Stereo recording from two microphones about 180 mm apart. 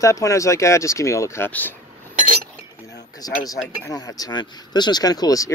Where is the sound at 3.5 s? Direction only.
20° left (ahead or behind).